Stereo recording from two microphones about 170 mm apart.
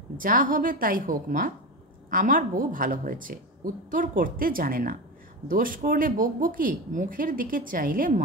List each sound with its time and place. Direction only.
0.2 s a woman's voice: 55° right (ahead or behind)